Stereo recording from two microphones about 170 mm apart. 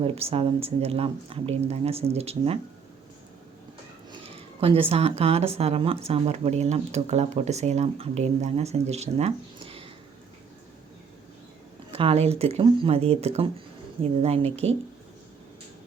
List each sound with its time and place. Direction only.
0.0 s speech: 35° right (ahead or behind)
4.3 s speech: 35° right (ahead or behind)
11.9 s speech: 35° right (ahead or behind)